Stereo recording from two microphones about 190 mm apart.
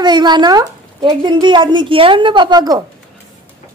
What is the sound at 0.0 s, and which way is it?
A woman's voice, 20° right (ahead or behind).